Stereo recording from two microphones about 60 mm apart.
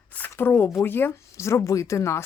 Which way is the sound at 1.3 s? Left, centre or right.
Left.